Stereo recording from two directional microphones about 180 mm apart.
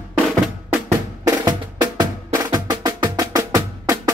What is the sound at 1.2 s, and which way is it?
Music, 20° right (ahead or behind).